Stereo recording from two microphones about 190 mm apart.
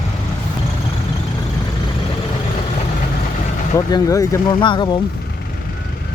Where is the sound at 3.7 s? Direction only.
15° left (ahead or behind).